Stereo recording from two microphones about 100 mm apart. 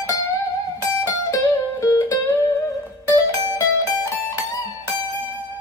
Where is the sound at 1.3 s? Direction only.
35° left (ahead or behind).